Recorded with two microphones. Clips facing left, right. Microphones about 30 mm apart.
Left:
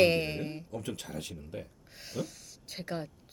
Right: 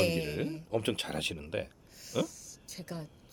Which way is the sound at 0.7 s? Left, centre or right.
Right.